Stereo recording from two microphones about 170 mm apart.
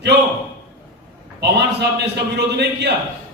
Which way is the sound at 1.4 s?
85° right.